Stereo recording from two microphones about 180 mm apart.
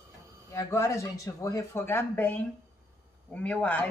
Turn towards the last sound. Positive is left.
turn(degrees=10)  # may be behind; listen again after turning